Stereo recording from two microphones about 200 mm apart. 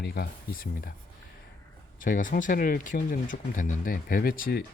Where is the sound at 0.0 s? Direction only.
50° left (ahead or behind).